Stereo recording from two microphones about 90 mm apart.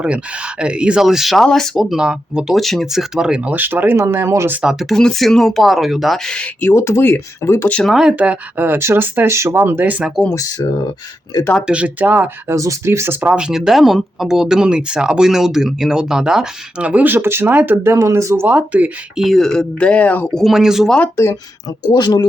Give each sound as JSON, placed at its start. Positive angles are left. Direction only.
{"t": 0.0, "sound": "speech", "side_deg": -10}
{"t": 4.6, "sound": "speech", "side_deg": -5}
{"t": 6.7, "sound": "speech", "side_deg": 30}
{"t": 7.9, "sound": "speech", "side_deg": -5}
{"t": 8.1, "sound": "speech", "side_deg": -15}
{"t": 11.6, "sound": "speech", "side_deg": -15}
{"t": 12.5, "sound": "speech", "side_deg": -35}
{"t": 13.2, "sound": "speech", "side_deg": -10}
{"t": 17.9, "sound": "speech", "side_deg": -35}
{"t": 18.4, "sound": "speech", "side_deg": -15}
{"t": 19.2, "sound": "speech", "side_deg": 0}
{"t": 20.3, "sound": "speech", "side_deg": 0}
{"t": 21.8, "sound": "speech", "side_deg": 50}